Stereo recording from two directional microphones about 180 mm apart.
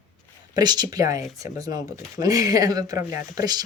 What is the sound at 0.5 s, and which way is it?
Speech, 25° right (ahead or behind).